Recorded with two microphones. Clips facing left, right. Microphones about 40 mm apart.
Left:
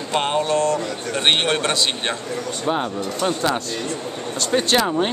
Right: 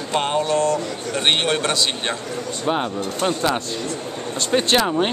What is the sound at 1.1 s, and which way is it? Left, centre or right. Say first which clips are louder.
Speech: left 1 dB; centre.